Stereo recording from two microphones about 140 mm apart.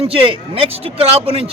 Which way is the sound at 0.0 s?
40° right (ahead or behind).